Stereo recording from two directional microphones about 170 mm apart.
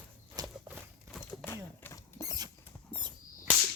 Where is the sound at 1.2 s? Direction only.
15° left (ahead or behind).